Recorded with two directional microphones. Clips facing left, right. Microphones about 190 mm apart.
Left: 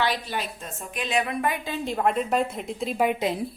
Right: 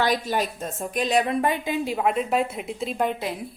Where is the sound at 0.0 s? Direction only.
45° right (ahead or behind).